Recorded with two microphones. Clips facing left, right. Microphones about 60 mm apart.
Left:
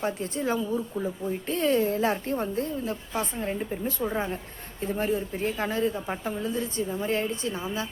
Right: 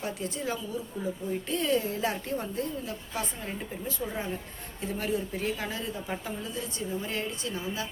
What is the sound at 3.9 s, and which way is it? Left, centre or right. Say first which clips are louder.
A woman's voice: left 4 dB; left.